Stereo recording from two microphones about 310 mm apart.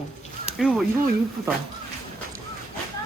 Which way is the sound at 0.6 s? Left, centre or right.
Centre.